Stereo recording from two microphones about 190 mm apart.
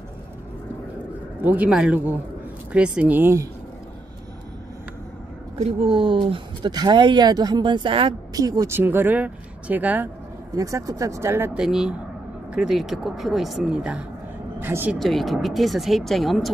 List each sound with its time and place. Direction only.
1.4 s speech: 10° right (ahead or behind)
5.6 s speech: 30° right (ahead or behind); by 15.0 s 10° right (ahead or behind)
15.0 s speech: centre (ahead or behind)